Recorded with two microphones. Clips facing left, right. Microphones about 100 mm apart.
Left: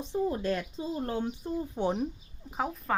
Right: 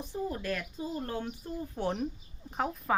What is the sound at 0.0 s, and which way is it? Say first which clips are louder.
Speech: left 5 dB; 25° left (ahead or behind).